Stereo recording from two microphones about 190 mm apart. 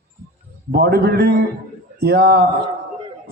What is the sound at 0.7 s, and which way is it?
A man's voice, 55° right (ahead or behind).